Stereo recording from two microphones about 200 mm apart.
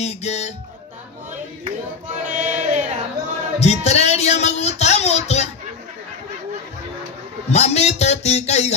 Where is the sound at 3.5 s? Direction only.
35° left (ahead or behind).